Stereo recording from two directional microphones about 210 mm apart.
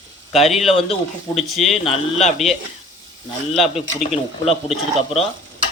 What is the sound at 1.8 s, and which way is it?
Speech, 30° left (ahead or behind).